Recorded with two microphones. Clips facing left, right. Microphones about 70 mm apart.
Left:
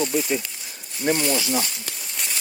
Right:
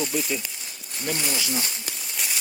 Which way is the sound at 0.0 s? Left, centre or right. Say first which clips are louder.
Left 4 dB; centre.